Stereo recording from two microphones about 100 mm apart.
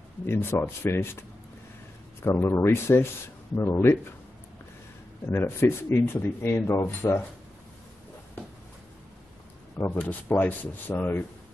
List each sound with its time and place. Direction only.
0.3 s speech: 25° left (ahead or behind)
2.2 s speech: 25° left (ahead or behind)
5.3 s speech: 25° left (ahead or behind)
9.9 s speech: 15° left (ahead or behind)